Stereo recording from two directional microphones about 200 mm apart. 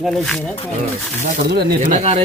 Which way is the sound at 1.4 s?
55° right (ahead or behind).